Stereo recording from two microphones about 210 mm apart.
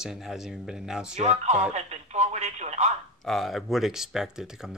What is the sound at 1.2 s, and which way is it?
Speech, 30° right (ahead or behind).